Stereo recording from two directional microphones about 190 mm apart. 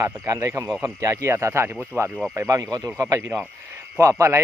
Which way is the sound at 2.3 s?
15° right (ahead or behind).